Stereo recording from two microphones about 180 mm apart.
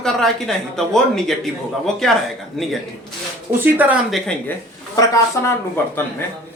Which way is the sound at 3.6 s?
10° right (ahead or behind).